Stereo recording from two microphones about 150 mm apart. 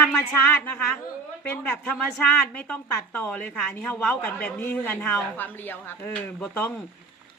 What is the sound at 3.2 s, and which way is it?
A man's voice, 10° left (ahead or behind).